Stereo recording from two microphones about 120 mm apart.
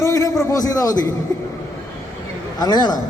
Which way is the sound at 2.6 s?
35° left (ahead or behind).